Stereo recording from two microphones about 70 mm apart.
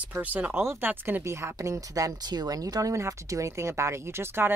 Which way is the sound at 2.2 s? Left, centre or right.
Right.